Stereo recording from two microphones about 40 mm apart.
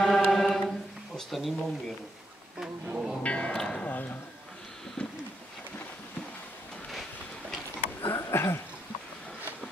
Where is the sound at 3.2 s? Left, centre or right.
Left.